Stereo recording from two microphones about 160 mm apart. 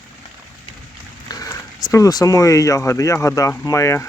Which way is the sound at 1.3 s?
25° left (ahead or behind).